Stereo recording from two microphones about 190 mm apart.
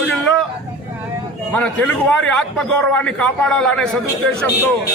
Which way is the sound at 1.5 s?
5° left (ahead or behind).